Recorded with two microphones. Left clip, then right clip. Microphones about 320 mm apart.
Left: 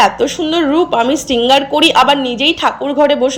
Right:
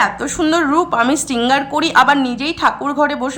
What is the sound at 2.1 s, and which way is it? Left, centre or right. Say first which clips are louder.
Speech: left 1 dB; right.